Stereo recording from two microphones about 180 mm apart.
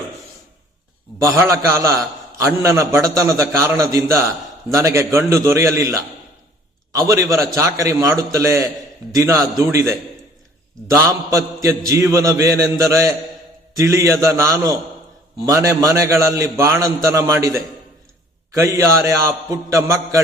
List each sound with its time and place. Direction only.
1.2 s a man's voice: 15° right (ahead or behind)
10.9 s a man's voice: 15° right (ahead or behind)